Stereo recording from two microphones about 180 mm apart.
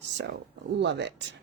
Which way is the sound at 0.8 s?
75° right (ahead or behind).